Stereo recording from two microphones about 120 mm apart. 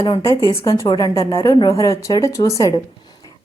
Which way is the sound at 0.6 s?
25° left (ahead or behind).